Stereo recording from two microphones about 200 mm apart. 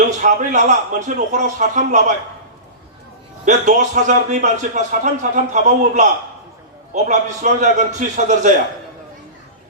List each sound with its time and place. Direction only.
0.0 s a man's voice: 40° right (ahead or behind)
3.4 s a man's voice: 40° right (ahead or behind)